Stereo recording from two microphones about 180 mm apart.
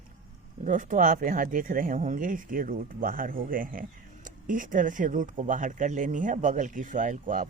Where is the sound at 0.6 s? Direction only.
45° right (ahead or behind).